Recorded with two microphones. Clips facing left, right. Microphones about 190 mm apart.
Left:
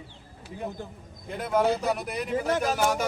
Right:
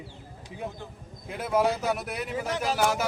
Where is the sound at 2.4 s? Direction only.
50° left (ahead or behind).